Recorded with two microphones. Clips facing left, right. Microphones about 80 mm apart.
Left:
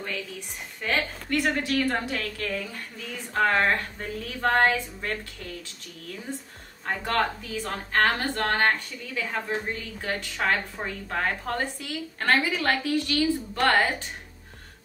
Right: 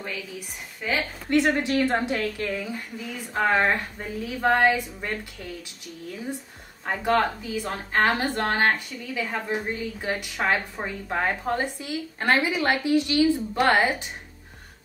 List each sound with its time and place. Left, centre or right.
0.8 s a woman's voice: centre
1.3 s a woman's voice: right
6.9 s a woman's voice: centre